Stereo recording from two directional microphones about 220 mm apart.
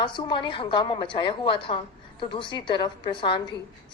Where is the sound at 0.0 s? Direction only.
20° left (ahead or behind).